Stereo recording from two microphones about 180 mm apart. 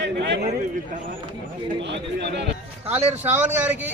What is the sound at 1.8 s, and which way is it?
Speech, 75° right (ahead or behind).